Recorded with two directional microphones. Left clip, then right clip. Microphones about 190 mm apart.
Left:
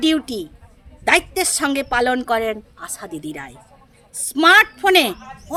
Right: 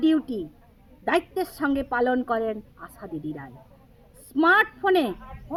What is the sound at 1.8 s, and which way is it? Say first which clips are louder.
Speech: left 5 dB; 45° left (ahead or behind).